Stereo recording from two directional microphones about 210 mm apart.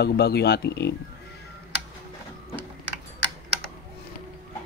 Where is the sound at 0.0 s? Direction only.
50° left (ahead or behind).